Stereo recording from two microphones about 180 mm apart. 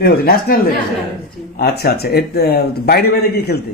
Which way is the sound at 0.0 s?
55° left (ahead or behind).